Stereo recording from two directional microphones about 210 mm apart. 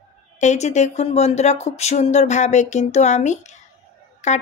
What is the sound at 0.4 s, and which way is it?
Speech, 35° left (ahead or behind).